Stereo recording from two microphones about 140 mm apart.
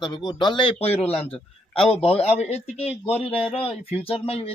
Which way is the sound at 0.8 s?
45° left (ahead or behind).